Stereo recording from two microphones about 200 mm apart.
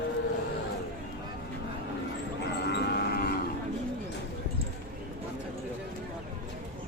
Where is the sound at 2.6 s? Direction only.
55° left (ahead or behind).